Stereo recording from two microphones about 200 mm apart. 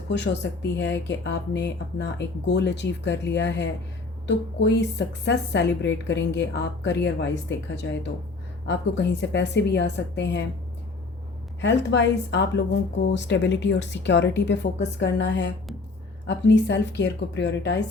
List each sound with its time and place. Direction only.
0.1 s speech: 60° left (ahead or behind)
11.6 s speech: 65° left (ahead or behind)